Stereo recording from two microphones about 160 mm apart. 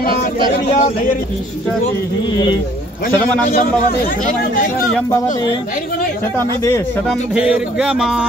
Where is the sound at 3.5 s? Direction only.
60° left (ahead or behind).